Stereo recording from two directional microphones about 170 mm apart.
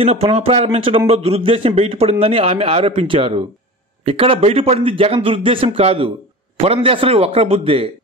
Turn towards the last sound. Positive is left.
turn(degrees=-35)  # may be behind; listen again after turning